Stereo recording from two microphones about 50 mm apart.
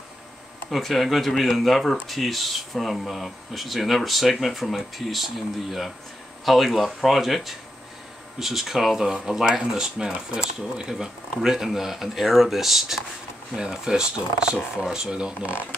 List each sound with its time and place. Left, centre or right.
0.7 s speech: centre